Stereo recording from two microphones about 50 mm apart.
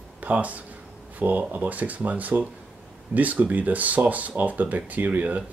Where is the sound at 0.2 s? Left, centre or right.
Right.